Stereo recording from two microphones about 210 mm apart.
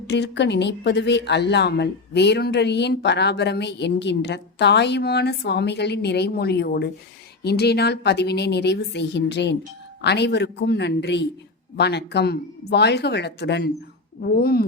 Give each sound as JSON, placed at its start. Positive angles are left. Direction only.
{"t": 0.1, "sound": "speech", "side_deg": 55}